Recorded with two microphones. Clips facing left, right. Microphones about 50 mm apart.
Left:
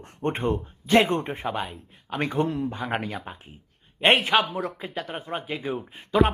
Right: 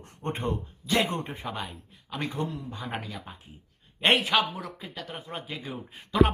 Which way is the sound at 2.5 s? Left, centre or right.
Left.